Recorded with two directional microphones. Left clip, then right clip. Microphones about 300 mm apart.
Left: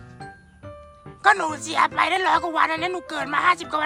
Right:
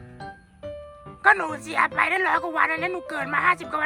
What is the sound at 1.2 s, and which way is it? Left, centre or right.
A woman's voice, centre.